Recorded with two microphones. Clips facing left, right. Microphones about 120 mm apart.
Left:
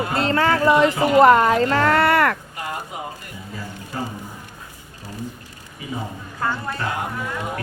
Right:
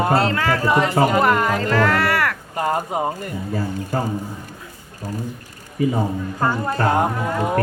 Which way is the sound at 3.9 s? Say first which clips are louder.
Right 5 dB; 40° right (ahead or behind).